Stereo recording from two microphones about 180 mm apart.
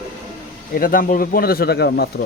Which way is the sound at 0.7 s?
50° left (ahead or behind).